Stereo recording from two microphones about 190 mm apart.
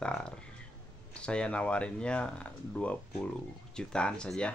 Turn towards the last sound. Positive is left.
turn(degrees=5)  # may be behind; listen again after turning